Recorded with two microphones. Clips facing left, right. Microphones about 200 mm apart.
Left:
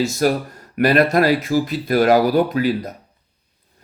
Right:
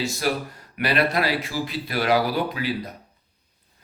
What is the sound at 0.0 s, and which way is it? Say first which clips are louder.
Speech: left 7 dB; 45° left (ahead or behind).